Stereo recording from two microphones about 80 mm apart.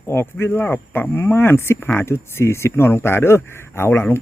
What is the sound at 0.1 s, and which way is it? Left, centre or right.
Speech, left.